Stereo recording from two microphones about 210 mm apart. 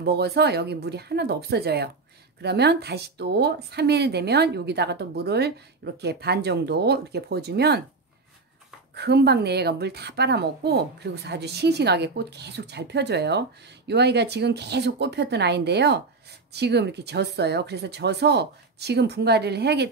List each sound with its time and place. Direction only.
0.0 s speech: 50° right (ahead or behind)
8.9 s speech: 50° right (ahead or behind)